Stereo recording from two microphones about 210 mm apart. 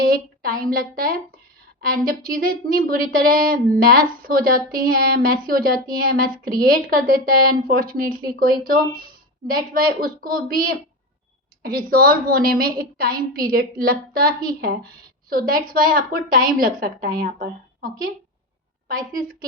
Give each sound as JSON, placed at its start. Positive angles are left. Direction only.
{"t": 0.1, "sound": "a woman's voice", "side_deg": -45}